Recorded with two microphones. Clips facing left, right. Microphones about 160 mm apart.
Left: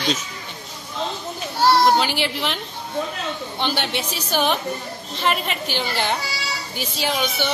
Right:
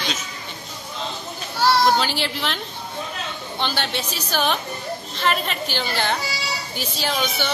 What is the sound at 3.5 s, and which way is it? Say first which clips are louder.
A woman's voice: even; 15° left (ahead or behind).